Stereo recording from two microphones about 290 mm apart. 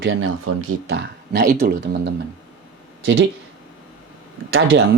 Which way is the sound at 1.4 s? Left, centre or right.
Right.